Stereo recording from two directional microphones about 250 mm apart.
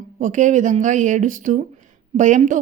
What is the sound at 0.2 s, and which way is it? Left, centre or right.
Speech, right.